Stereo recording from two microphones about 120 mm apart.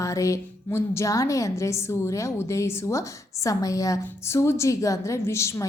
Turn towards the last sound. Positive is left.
turn(degrees=25)  # may be behind; listen again after turning